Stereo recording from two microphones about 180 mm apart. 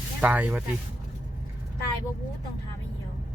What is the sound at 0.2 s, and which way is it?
Speech, 10° right (ahead or behind).